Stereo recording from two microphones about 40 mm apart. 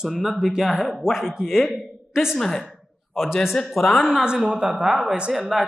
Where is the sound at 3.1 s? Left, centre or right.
Centre.